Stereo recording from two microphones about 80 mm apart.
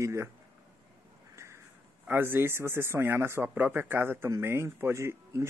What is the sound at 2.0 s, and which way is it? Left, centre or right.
Speech, right.